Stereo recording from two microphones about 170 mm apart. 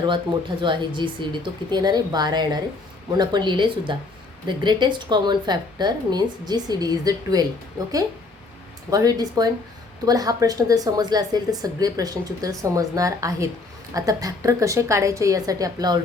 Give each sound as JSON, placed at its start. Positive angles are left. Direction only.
{"t": 0.0, "sound": "speech", "side_deg": -30}
{"t": 8.9, "sound": "speech", "side_deg": -20}